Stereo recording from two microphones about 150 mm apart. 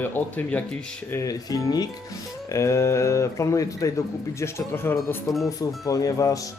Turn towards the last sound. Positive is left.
turn(degrees=20)  # may be behind; listen again after turning